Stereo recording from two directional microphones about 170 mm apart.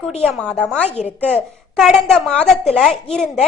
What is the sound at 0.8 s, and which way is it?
Speech, 35° left (ahead or behind).